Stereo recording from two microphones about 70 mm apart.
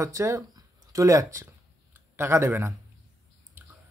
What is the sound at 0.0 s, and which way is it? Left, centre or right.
Speech, right.